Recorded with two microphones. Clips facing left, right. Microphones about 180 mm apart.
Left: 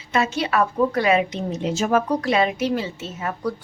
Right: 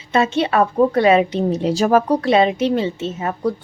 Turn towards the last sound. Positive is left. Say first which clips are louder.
# right 5 dB
turn(degrees=-25)  # may be behind; listen again after turning